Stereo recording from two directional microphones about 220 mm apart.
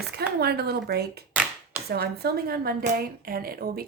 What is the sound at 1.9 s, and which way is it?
A woman's voice, 45° right (ahead or behind).